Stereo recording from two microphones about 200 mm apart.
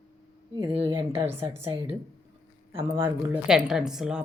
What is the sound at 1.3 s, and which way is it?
Speech, 10° right (ahead or behind).